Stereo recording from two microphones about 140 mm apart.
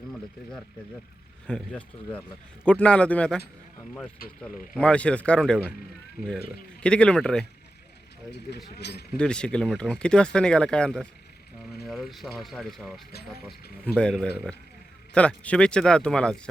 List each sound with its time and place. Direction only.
1.5 s speech: 10° left (ahead or behind)
6.1 s speech: 5° right (ahead or behind)
6.7 s speech: 10° left (ahead or behind)
9.1 s speech: 5° left (ahead or behind)